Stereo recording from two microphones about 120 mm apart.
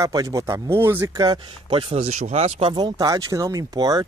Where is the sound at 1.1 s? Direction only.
35° right (ahead or behind).